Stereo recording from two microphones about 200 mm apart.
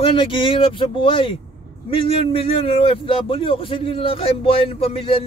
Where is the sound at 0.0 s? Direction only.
25° left (ahead or behind).